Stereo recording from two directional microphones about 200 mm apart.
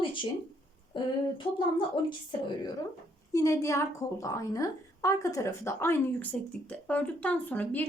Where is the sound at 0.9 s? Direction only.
25° left (ahead or behind).